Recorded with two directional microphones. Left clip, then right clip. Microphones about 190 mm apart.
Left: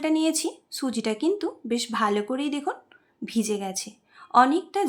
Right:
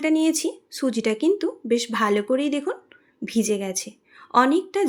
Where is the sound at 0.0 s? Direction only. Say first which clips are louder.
Right 3 dB; 10° right (ahead or behind).